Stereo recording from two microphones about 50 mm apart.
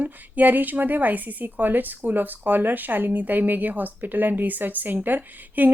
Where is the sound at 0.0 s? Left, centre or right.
Right.